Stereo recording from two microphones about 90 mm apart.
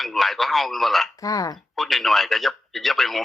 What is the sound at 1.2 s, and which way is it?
Speech, 40° left (ahead or behind).